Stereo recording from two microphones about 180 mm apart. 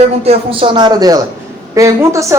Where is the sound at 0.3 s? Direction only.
30° right (ahead or behind).